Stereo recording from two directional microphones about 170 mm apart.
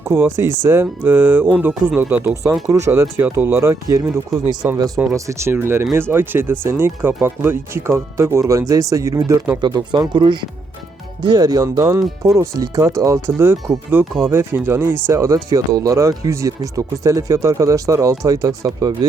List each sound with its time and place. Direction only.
0.0 s speech: 15° right (ahead or behind)